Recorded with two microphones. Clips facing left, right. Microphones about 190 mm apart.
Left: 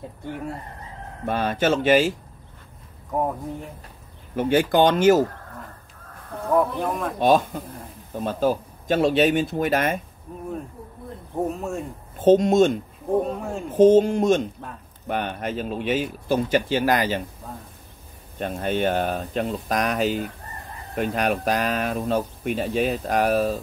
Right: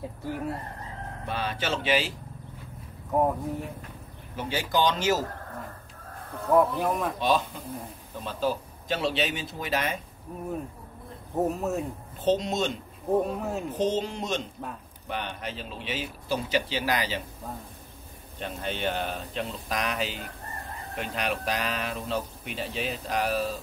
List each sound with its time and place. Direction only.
0.2 s speech: 5° right (ahead or behind)
1.2 s speech: 50° left (ahead or behind)
3.1 s speech: 5° right (ahead or behind)
4.4 s speech: 55° left (ahead or behind)
6.5 s speech: 5° right (ahead or behind)
7.2 s speech: 50° left (ahead or behind)
10.3 s speech: 5° right (ahead or behind)
12.2 s speech: 50° left (ahead or behind)
13.3 s speech: 5° right (ahead or behind)
13.7 s speech: 50° left (ahead or behind)
18.4 s speech: 50° left (ahead or behind)